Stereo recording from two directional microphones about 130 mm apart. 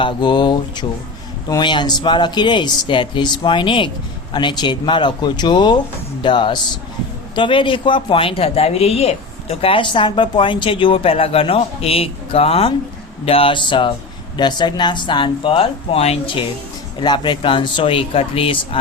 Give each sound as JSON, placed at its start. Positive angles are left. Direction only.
{"t": 0.0, "sound": "speech", "side_deg": 35}